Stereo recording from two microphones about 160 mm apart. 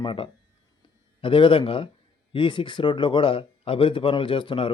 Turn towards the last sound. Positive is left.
turn(degrees=30)  # may be behind; listen again after turning